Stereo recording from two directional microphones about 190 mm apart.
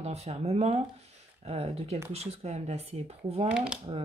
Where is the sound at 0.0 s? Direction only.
35° right (ahead or behind).